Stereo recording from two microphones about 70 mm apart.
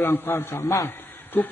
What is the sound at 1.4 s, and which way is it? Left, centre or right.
Speech, left.